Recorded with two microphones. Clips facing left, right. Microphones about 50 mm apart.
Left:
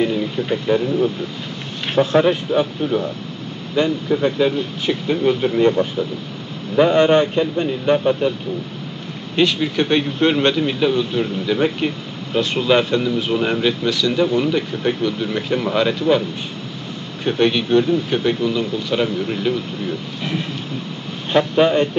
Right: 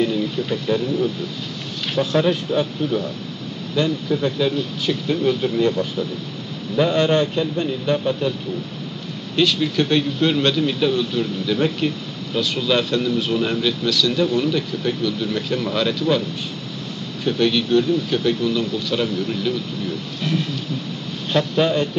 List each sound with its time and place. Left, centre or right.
0.0 s speech: left
9.3 s a man's voice: left